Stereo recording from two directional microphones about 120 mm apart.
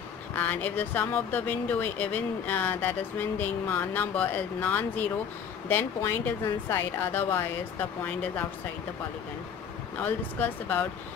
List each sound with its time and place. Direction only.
0.3 s a woman's voice: 15° left (ahead or behind)
9.9 s speech: 15° left (ahead or behind)